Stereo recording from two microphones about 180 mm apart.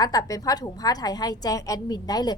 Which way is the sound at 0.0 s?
20° left (ahead or behind).